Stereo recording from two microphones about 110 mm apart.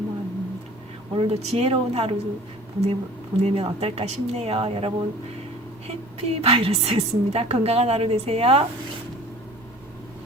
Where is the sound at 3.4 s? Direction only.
65° right (ahead or behind).